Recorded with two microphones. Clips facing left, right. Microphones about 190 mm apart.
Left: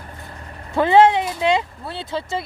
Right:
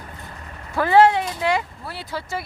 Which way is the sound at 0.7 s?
20° left (ahead or behind).